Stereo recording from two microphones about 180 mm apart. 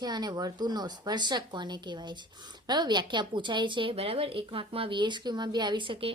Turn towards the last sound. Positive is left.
turn(degrees=-30)  # may be behind; listen again after turning